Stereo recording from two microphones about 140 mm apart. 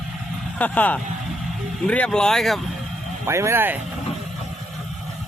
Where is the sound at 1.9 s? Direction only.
5° left (ahead or behind).